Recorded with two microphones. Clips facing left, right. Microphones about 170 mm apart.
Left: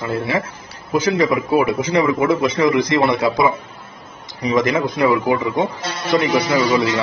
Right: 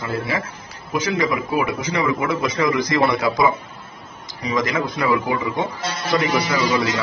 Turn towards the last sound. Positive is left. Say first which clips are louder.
# left 4 dB
turn(degrees=30)  # may be behind; listen again after turning